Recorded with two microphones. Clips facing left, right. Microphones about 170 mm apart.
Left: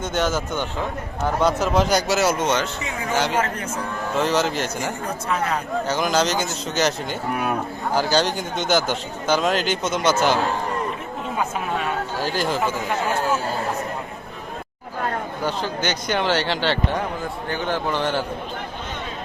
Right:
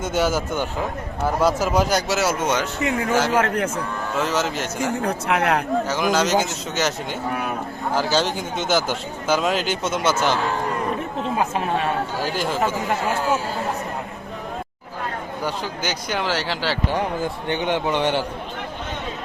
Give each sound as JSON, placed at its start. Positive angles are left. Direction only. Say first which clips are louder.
{"t": 0.0, "sound": "speech", "louder": "right 2 dB", "side_deg": -10}
{"t": 3.3, "sound": "a man's voice", "louder": "right 4 dB", "side_deg": -65}
{"t": 4.2, "sound": "speech", "louder": "left 2 dB", "side_deg": 0}
{"t": 5.0, "sound": "speech", "louder": "right 4 dB", "side_deg": -70}
{"t": 5.9, "sound": "speech", "louder": "even", "side_deg": 0}
{"t": 12.2, "sound": "speech", "louder": "left 4 dB", "side_deg": 0}
{"t": 15.4, "sound": "speech", "louder": "left 2 dB", "side_deg": -10}
{"t": 17.5, "sound": "speech", "louder": "right 2 dB", "side_deg": -20}